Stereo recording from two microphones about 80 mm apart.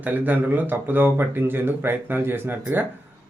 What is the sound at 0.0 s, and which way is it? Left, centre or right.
Speech, right.